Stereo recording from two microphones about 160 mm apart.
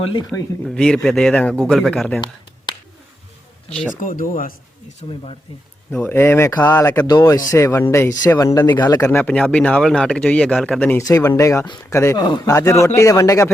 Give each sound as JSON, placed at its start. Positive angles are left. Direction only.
{"t": 0.0, "sound": "speech", "side_deg": 30}
{"t": 0.6, "sound": "speech", "side_deg": 5}
{"t": 4.0, "sound": "speech", "side_deg": 55}
{"t": 4.9, "sound": "speech", "side_deg": 35}
{"t": 5.9, "sound": "speech", "side_deg": 10}
{"t": 7.1, "sound": "speech", "side_deg": 25}
{"t": 11.0, "sound": "speech", "side_deg": 20}